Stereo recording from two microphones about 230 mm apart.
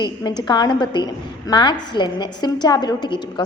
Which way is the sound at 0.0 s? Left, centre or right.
Centre.